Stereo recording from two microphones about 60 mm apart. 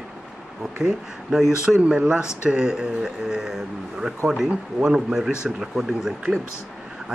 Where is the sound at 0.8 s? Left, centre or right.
Centre.